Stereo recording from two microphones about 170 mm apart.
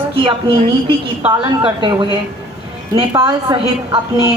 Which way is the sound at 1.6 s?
30° right (ahead or behind).